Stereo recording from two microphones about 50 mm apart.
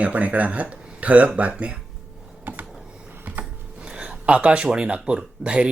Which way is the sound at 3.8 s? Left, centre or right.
Right.